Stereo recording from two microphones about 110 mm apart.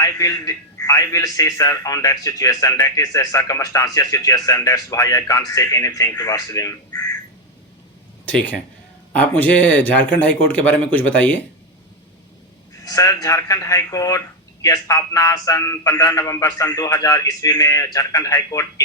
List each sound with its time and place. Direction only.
0.0 s a man's voice: 35° left (ahead or behind)
8.2 s speech: 10° left (ahead or behind)
12.8 s a man's voice: 35° left (ahead or behind)